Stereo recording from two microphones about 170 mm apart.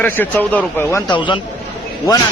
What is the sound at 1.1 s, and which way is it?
Speech, 30° left (ahead or behind).